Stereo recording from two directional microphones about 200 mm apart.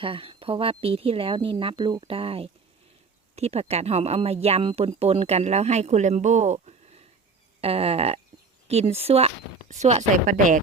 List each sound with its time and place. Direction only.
0.0 s speech: 25° right (ahead or behind)